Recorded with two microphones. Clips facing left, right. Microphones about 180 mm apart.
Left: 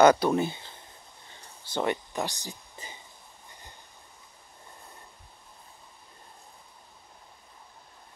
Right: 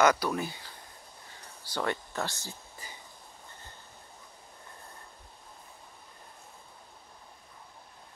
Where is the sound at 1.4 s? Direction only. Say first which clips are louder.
Left 4 dB; 20° left (ahead or behind).